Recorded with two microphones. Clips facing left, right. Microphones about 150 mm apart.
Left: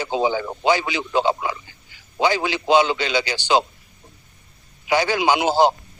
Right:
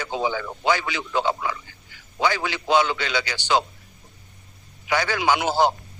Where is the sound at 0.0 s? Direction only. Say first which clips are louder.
Left 4 dB; 20° left (ahead or behind).